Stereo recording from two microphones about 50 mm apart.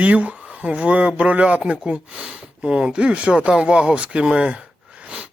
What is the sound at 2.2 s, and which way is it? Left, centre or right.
Speech, centre.